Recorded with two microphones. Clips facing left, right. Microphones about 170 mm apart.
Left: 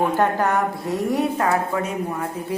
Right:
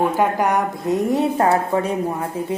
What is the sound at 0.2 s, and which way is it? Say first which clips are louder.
A woman's voice: right 1 dB; 15° right (ahead or behind).